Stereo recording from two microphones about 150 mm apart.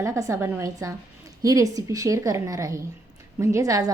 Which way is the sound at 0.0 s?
20° right (ahead or behind).